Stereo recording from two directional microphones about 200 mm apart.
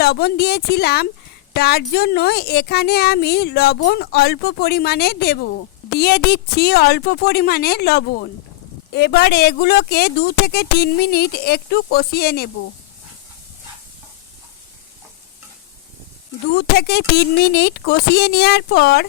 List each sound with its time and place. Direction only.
0.0 s a woman's voice: 50° left (ahead or behind)
16.6 s a woman's voice: 55° left (ahead or behind)